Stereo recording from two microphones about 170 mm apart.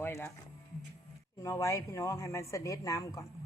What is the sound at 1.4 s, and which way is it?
Speech, 20° left (ahead or behind).